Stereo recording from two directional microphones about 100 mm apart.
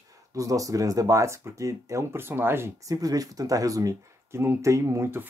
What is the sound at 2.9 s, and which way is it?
Speech, 40° right (ahead or behind).